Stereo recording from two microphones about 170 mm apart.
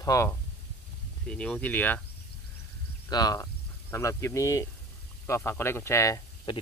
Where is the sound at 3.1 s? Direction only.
25° left (ahead or behind).